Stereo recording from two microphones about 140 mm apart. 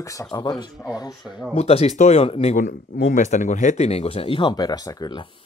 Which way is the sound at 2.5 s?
60° left (ahead or behind).